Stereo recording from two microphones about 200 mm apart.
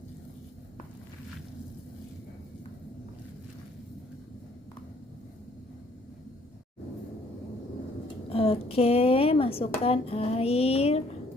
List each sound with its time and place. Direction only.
8.3 s speech: 30° left (ahead or behind)